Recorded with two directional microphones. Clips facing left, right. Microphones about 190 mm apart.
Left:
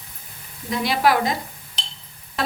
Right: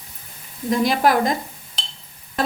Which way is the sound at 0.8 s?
45° right (ahead or behind).